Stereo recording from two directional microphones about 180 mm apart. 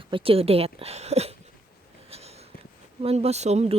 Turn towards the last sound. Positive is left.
turn(degrees=-35)  # may be behind; listen again after turning